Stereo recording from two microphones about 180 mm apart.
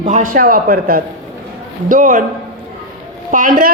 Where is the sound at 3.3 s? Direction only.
50° right (ahead or behind).